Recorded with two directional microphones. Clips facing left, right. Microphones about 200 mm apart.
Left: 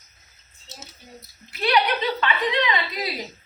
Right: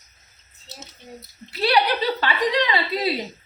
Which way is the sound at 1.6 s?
35° right (ahead or behind).